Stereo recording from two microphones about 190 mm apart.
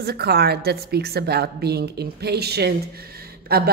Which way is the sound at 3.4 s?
55° right (ahead or behind).